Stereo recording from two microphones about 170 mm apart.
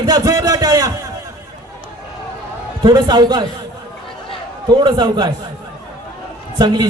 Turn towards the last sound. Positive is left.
turn(degrees=-25)  # may be behind; listen again after turning